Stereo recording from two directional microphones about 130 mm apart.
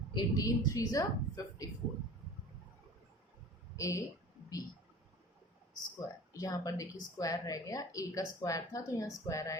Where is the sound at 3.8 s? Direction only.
25° left (ahead or behind).